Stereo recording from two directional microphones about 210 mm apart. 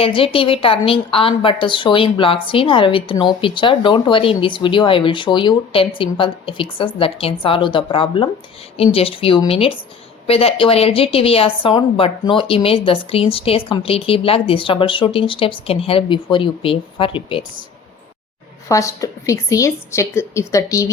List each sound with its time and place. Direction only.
0.0 s a woman's voice: 25° left (ahead or behind)
18.7 s a woman's voice: 15° left (ahead or behind)